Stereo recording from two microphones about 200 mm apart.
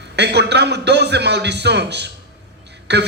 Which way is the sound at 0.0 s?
55° right (ahead or behind).